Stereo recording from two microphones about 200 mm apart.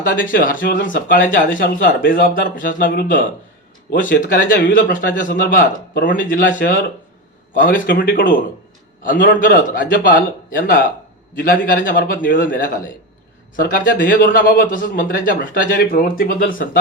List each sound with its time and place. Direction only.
0.2 s speech: 45° left (ahead or behind)
10.6 s speech: 60° left (ahead or behind)
11.3 s speech: 45° left (ahead or behind)